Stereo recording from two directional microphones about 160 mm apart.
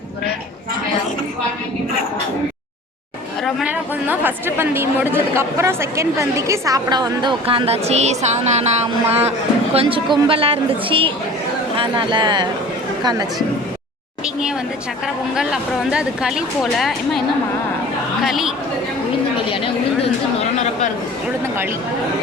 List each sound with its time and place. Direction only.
3.4 s a woman's voice: 5° right (ahead or behind); by 12.5 s 30° right (ahead or behind)
15.0 s a woman's voice: 5° right (ahead or behind)
20.4 s a sound: 45° left (ahead or behind)